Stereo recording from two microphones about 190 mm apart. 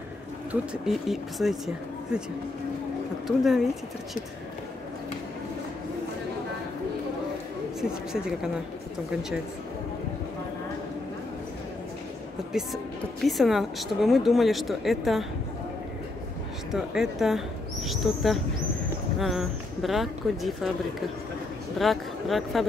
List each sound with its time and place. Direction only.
0.5 s speech: centre (ahead or behind)
3.3 s speech: centre (ahead or behind)
8.1 s speech: 5° right (ahead or behind)
12.5 s speech: 5° right (ahead or behind)
16.7 s speech: centre (ahead or behind)
21.7 s speech: centre (ahead or behind)